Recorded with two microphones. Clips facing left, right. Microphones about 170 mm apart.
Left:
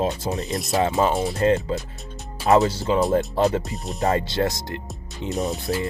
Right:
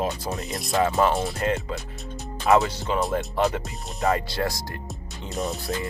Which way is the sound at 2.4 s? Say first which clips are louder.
Left 3 dB; 30° left (ahead or behind).